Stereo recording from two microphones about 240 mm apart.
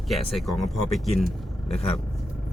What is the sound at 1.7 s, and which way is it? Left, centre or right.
Speech, left.